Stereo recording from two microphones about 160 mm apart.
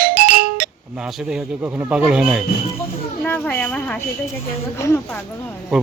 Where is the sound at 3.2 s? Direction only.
10° left (ahead or behind).